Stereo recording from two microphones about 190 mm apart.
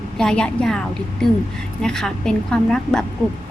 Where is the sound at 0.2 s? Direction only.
5° left (ahead or behind).